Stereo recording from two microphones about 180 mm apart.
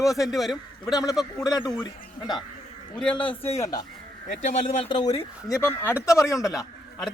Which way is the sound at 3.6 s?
20° left (ahead or behind).